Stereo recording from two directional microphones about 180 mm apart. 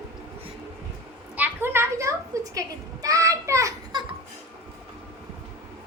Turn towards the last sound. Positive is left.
turn(degrees=-15)  # may be behind; listen again after turning